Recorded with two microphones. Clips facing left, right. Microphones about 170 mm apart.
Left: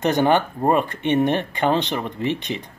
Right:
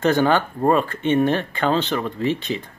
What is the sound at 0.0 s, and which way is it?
Speech, 20° left (ahead or behind).